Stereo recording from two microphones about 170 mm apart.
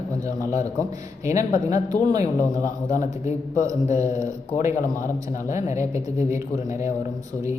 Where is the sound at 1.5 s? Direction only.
45° left (ahead or behind).